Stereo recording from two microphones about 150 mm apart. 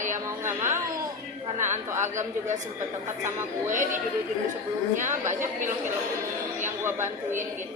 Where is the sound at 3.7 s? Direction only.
60° right (ahead or behind).